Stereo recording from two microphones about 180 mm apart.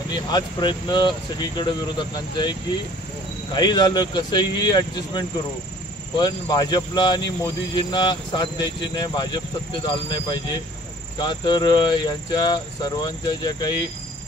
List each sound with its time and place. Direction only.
0.1 s speech: 25° left (ahead or behind)
3.5 s speech: 25° left (ahead or behind)